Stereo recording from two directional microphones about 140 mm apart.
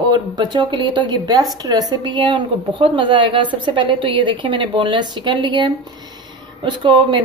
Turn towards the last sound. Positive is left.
turn(degrees=-35)  # may be behind; listen again after turning